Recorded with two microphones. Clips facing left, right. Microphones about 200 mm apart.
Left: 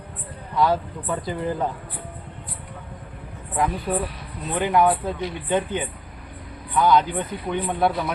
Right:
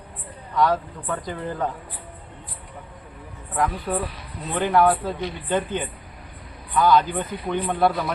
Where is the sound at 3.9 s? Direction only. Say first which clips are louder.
Left 1 dB; 10° left (ahead or behind).